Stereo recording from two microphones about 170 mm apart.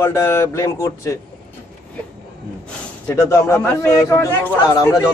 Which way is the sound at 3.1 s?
15° left (ahead or behind).